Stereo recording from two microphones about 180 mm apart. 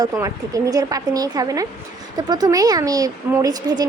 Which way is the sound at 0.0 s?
20° right (ahead or behind).